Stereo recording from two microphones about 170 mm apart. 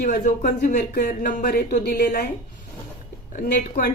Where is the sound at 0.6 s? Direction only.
60° left (ahead or behind).